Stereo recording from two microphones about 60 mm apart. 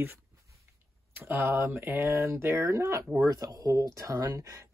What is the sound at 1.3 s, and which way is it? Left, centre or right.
Speech, right.